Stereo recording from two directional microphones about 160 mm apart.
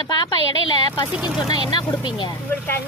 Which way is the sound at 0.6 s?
30° left (ahead or behind).